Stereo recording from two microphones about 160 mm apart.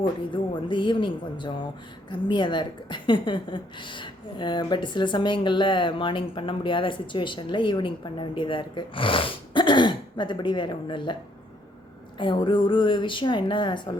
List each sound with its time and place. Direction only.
0.0 s a woman's voice: 30° left (ahead or behind)